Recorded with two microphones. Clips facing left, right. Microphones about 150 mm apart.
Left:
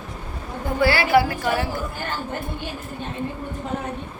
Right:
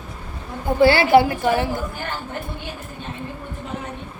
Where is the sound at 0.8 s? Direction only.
25° right (ahead or behind).